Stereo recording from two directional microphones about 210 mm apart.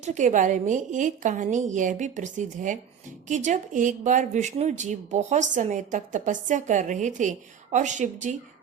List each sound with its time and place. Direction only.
0.0 s speech: 35° right (ahead or behind)